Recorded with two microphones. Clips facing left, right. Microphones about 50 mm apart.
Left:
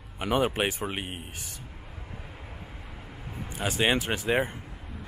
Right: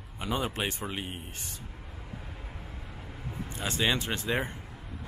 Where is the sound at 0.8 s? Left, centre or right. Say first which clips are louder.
Left 3 dB; left.